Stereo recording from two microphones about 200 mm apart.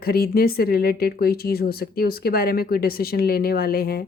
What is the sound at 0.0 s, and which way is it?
Speech, 50° left (ahead or behind).